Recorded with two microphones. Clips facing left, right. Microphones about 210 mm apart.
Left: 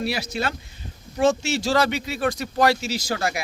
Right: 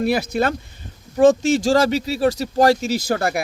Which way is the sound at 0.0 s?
55° right (ahead or behind).